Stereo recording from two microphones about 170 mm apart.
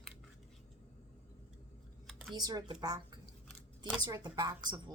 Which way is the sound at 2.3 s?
25° right (ahead or behind).